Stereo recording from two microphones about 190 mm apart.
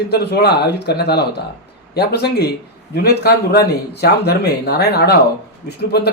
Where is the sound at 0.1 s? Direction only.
60° left (ahead or behind).